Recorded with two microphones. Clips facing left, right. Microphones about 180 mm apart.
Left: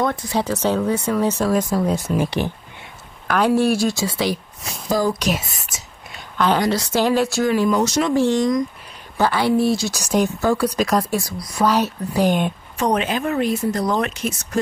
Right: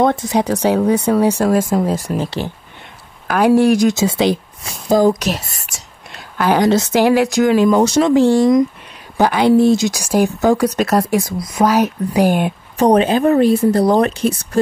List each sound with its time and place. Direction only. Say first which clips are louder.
0.0 s speech: right 6 dB; 25° right (ahead or behind)
1.9 s speech: right 2 dB; centre (ahead or behind)
2.1 s speech: even; 15° left (ahead or behind)
3.3 s speech: right 5 dB; 10° right (ahead or behind)
5.2 s speech: right 1 dB; centre (ahead or behind)
6.6 s speech: right 6 dB; 20° right (ahead or behind)
7.4 s speech: right 7 dB; 90° right
7.8 s speech: right 6 dB; 30° right (ahead or behind); by 12.5 s 10° right (ahead or behind)
12.7 s speech: right 9 dB; 35° right (ahead or behind)